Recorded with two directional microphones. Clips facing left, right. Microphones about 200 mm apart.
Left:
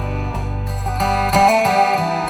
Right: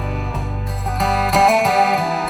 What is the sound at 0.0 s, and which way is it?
Music, centre (ahead or behind).